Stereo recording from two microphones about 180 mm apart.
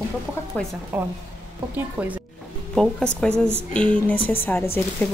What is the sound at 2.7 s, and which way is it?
Speech, 5° left (ahead or behind).